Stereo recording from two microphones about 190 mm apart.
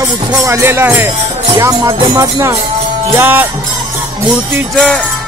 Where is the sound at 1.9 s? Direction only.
20° right (ahead or behind).